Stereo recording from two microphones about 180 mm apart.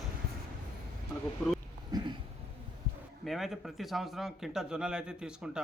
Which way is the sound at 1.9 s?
25° right (ahead or behind).